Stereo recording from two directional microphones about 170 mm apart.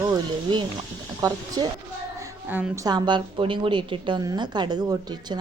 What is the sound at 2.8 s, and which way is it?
A woman's voice, 25° right (ahead or behind).